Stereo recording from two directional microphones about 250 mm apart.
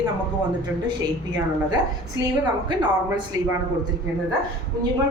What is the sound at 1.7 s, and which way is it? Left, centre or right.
Speech, centre.